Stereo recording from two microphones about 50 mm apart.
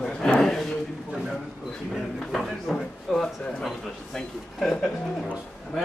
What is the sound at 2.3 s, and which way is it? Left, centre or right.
Drawer open or close, centre.